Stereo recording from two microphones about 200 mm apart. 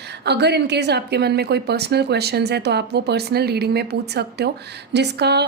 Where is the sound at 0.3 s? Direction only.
55° right (ahead or behind).